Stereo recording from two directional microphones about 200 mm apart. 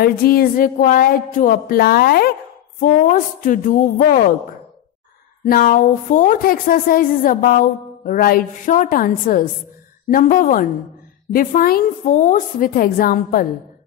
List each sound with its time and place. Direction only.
0.0 s a woman's voice: 50° left (ahead or behind)
5.4 s a woman's voice: 45° left (ahead or behind)